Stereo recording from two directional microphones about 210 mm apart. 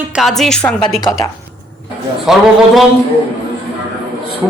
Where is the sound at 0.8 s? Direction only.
15° left (ahead or behind).